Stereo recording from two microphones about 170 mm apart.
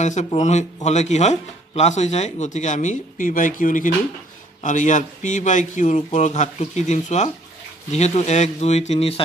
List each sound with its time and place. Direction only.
0.0 s speech: 45° left (ahead or behind)